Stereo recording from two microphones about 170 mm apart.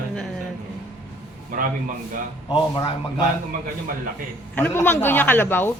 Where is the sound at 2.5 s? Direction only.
25° left (ahead or behind).